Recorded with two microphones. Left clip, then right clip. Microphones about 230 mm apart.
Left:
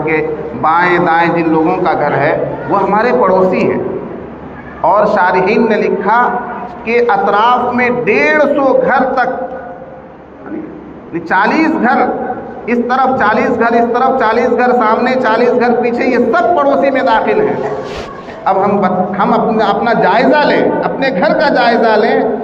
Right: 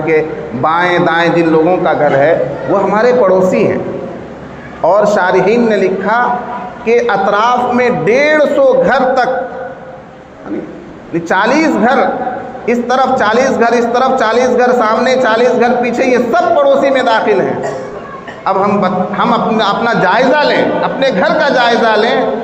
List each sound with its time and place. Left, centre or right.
0.0 s a man's voice: right
4.8 s a man's voice: right
11.1 s a man's voice: right
18.4 s a man's voice: right